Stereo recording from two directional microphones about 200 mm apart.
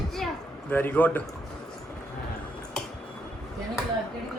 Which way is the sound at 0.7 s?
10° left (ahead or behind).